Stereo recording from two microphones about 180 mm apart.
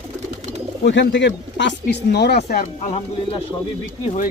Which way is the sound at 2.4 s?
45° left (ahead or behind).